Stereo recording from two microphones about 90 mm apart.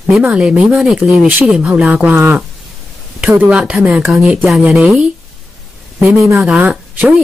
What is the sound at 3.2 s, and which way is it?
Speech, 20° right (ahead or behind).